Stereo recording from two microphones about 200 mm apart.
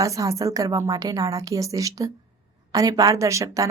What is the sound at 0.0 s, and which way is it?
A woman's voice, 15° right (ahead or behind).